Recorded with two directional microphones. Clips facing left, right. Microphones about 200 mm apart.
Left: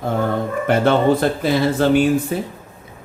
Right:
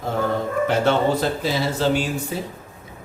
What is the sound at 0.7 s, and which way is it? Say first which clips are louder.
A man's voice: left 5 dB; 55° left (ahead or behind).